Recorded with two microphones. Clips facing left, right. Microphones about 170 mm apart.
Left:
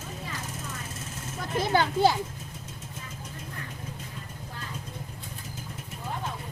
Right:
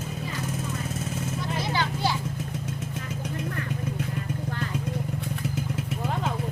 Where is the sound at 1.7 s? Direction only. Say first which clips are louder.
Left 7 dB; 50° left (ahead or behind).